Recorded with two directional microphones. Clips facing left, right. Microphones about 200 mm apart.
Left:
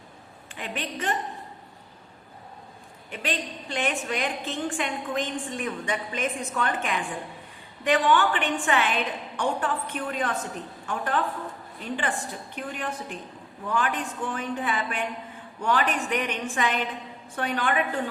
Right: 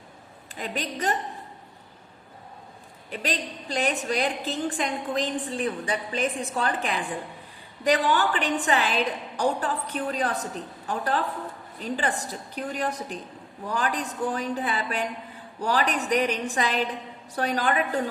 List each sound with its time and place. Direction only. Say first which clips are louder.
0.5 s a woman's voice: right 2 dB; 40° right (ahead or behind)
3.1 s a woman's voice: right 1 dB; 35° right (ahead or behind)